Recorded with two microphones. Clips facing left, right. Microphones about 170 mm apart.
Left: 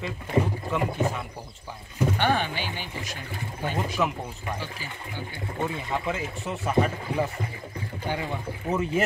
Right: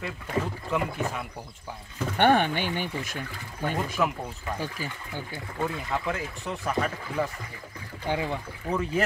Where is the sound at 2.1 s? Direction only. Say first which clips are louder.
Right 8 dB; 55° right (ahead or behind).